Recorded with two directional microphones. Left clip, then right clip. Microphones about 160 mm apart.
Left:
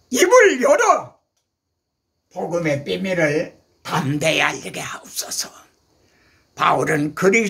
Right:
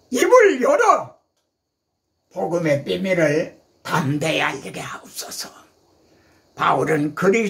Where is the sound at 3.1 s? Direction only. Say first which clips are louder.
Right 1 dB; 20° left (ahead or behind).